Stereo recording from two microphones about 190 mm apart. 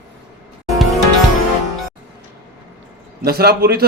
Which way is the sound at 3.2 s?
55° right (ahead or behind).